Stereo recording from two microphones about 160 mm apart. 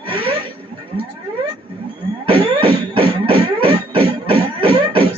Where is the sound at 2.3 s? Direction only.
35° right (ahead or behind).